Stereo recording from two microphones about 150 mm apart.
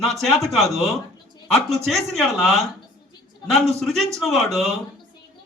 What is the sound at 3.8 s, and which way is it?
Speech, centre (ahead or behind).